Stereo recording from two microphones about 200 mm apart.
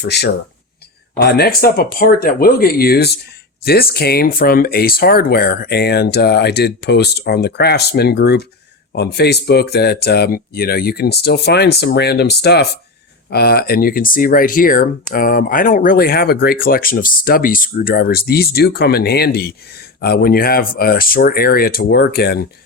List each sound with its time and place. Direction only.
0.0 s speech: 55° left (ahead or behind)